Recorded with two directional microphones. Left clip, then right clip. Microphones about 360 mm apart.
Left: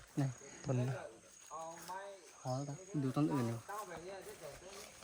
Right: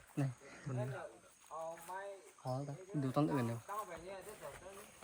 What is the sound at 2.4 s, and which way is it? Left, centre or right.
Speech, centre.